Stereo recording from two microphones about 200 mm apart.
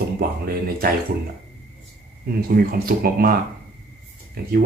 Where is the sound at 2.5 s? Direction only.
45° right (ahead or behind).